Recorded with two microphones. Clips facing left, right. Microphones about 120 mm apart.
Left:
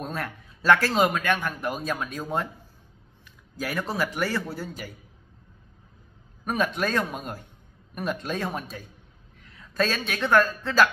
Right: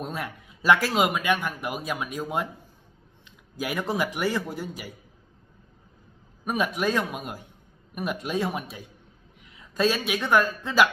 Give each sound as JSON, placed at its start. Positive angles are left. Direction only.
{"t": 0.0, "sound": "speech", "side_deg": -15}
{"t": 3.5, "sound": "speech", "side_deg": -15}
{"t": 6.4, "sound": "a woman's voice", "side_deg": -10}